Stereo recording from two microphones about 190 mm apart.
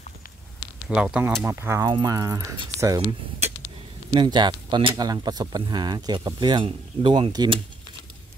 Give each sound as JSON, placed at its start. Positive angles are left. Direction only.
{"t": 0.8, "sound": "speech", "side_deg": -5}